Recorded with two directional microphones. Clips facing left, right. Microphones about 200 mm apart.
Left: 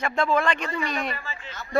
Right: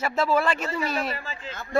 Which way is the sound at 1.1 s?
35° right (ahead or behind).